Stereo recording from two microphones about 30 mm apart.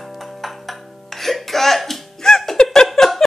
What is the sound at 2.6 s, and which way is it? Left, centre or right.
Giggle, centre.